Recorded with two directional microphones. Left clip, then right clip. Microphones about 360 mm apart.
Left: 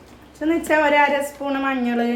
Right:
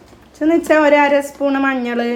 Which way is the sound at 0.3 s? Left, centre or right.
Right.